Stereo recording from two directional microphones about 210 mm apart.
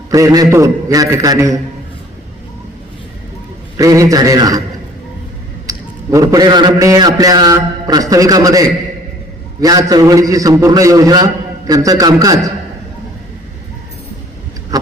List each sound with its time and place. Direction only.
0.1 s a man's voice: 15° right (ahead or behind)
3.8 s a man's voice: 15° right (ahead or behind)
5.6 s a man's voice: 15° right (ahead or behind)
14.7 s a sound: 15° right (ahead or behind)